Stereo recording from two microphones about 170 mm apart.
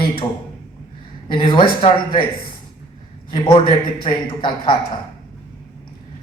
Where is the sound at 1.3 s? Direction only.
30° left (ahead or behind).